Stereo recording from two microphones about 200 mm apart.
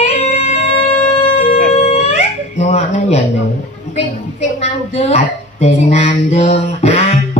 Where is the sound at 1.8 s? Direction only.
35° left (ahead or behind).